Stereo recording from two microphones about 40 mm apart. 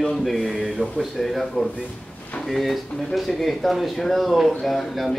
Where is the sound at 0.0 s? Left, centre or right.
Centre.